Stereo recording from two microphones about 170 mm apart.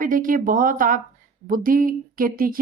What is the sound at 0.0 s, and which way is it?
Speech, 55° right (ahead or behind).